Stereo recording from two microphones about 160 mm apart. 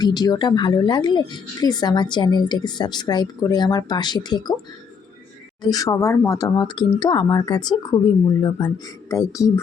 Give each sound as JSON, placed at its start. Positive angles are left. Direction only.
{"t": 0.0, "sound": "speech", "side_deg": 25}
{"t": 5.6, "sound": "speech", "side_deg": 20}